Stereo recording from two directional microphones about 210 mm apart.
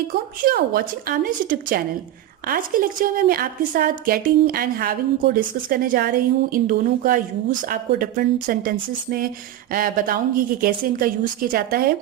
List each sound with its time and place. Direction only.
0.1 s a woman's voice: 45° right (ahead or behind)